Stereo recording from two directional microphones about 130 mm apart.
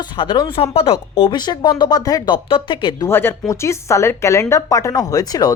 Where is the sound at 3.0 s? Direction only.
20° left (ahead or behind).